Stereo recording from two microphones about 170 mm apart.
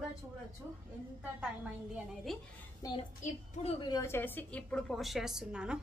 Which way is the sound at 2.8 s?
20° left (ahead or behind).